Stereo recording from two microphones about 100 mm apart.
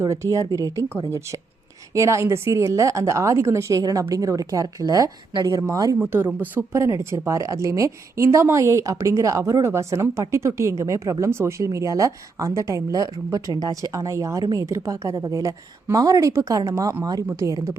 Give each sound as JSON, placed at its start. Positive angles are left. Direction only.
{"t": 0.0, "sound": "a woman's voice", "side_deg": -30}
{"t": 6.1, "sound": "a woman's voice", "side_deg": -20}